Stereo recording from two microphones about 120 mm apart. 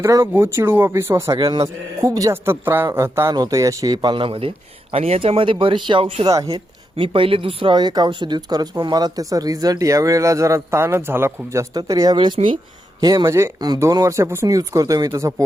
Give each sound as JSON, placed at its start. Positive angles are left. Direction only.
{"t": 0.0, "sound": "speech", "side_deg": -25}
{"t": 1.4, "sound": "speech", "side_deg": -45}
{"t": 2.0, "sound": "speech", "side_deg": -30}
{"t": 6.2, "sound": "speech", "side_deg": -30}
{"t": 6.5, "sound": "speech", "side_deg": -50}
{"t": 11.7, "sound": "a man's voice", "side_deg": -30}
{"t": 13.2, "sound": "speech", "side_deg": -25}